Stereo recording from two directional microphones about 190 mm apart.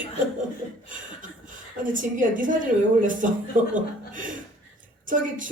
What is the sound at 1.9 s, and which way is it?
A woman's voice, 45° right (ahead or behind).